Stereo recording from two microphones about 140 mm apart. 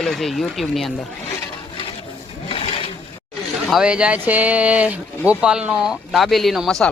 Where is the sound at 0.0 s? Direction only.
Centre (ahead or behind).